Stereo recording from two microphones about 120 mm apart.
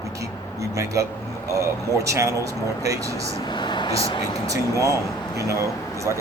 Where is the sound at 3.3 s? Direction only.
40° left (ahead or behind).